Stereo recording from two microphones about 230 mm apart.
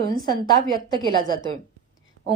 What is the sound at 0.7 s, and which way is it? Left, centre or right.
Speech, centre.